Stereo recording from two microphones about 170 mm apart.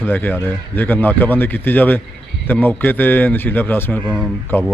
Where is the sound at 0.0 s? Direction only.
10° left (ahead or behind).